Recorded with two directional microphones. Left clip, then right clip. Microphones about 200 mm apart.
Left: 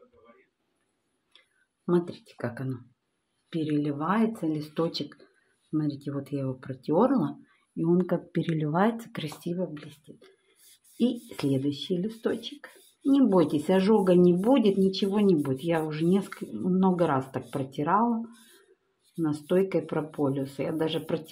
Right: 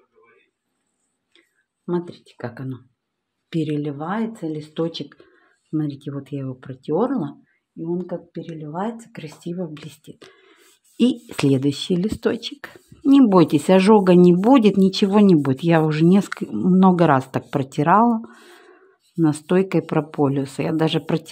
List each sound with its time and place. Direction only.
1.9 s speech: 15° right (ahead or behind)
3.4 s speech: 50° right (ahead or behind)
3.8 s speech: 20° right (ahead or behind)
7.8 s speech: 15° left (ahead or behind)
8.7 s speech: 10° left (ahead or behind)
9.5 s speech: 20° right (ahead or behind)
9.8 s speech: 55° right (ahead or behind)
19.2 s speech: 60° right (ahead or behind)